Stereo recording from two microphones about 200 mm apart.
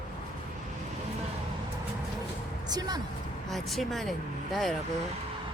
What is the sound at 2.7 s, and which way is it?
Speech, 20° right (ahead or behind).